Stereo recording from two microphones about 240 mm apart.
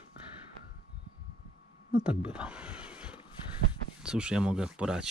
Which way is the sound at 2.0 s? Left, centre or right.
Centre.